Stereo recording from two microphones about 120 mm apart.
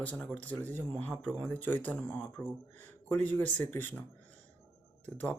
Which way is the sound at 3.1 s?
15° left (ahead or behind).